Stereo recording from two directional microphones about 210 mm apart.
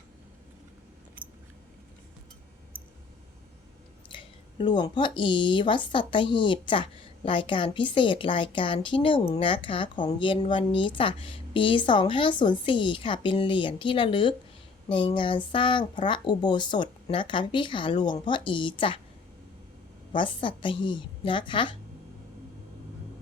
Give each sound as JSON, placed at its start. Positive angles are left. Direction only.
{"t": 4.1, "sound": "a woman's voice", "side_deg": 25}
{"t": 20.1, "sound": "a woman's voice", "side_deg": 25}